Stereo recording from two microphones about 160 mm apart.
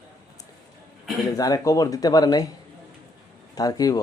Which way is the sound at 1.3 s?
20° left (ahead or behind).